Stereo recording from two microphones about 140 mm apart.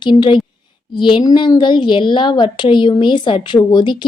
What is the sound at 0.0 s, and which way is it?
A woman's voice, 35° left (ahead or behind).